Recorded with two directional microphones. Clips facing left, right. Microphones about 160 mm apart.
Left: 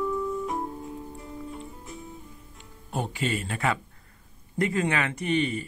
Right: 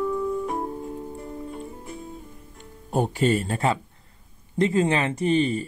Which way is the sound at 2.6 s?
45° right (ahead or behind).